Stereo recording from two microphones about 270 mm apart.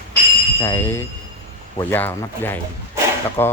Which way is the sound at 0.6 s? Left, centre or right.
Centre.